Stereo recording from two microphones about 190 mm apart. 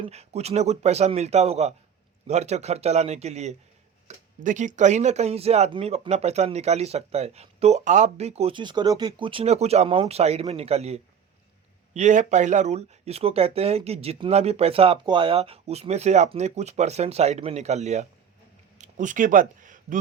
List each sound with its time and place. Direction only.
0.0 s speech: 35° right (ahead or behind)